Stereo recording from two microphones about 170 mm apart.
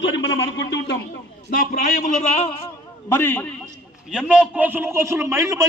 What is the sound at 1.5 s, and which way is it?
A man's voice, 60° left (ahead or behind).